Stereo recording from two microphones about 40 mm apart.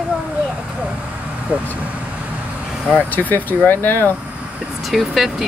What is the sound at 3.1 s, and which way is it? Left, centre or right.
Speech, left.